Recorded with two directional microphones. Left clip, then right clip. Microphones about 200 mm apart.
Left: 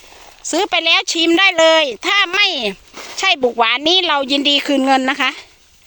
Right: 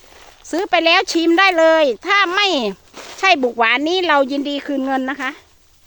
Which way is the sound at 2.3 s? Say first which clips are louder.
Left 1 dB; 10° right (ahead or behind).